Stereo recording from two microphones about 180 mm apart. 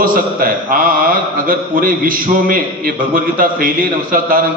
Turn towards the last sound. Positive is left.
turn(degrees=-50)  # may be behind; listen again after turning